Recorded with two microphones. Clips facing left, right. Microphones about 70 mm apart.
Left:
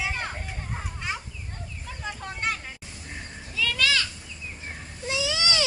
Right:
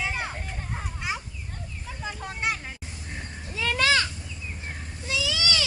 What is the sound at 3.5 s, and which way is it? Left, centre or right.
Goat, right.